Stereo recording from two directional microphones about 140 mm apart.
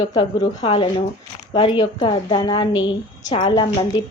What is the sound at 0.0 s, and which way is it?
A woman's voice, 30° left (ahead or behind).